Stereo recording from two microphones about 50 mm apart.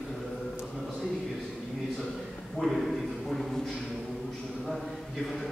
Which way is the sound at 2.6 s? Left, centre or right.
Centre.